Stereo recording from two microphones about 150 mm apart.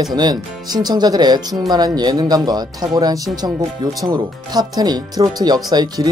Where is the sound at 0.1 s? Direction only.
25° right (ahead or behind).